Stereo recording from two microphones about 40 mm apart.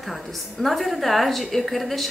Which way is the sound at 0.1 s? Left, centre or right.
Centre.